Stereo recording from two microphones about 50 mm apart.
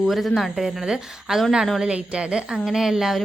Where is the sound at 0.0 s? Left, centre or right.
Centre.